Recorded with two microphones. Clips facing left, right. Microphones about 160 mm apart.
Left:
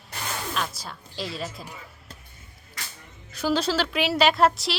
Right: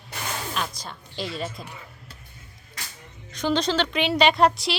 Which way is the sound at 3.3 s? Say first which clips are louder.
Right 1 dB; 5° left (ahead or behind).